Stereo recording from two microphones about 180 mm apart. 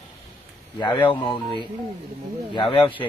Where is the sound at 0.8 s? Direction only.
25° left (ahead or behind).